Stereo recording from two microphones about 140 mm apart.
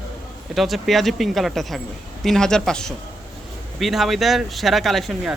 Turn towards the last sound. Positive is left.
turn(degrees=0)  # may be behind; listen again after turning